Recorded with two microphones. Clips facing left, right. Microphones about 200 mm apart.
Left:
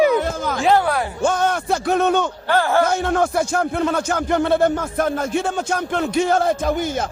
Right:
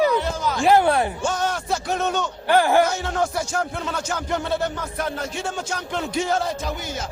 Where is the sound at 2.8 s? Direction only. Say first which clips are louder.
Left 5 dB; 55° left (ahead or behind).